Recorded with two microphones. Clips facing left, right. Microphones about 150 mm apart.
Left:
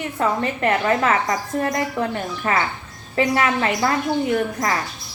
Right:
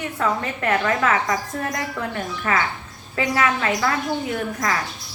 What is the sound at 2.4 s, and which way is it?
A woman's voice, 30° left (ahead or behind).